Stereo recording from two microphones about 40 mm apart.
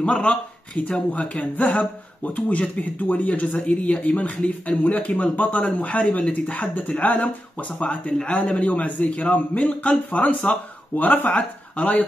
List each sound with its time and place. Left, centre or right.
0.0 s speech: left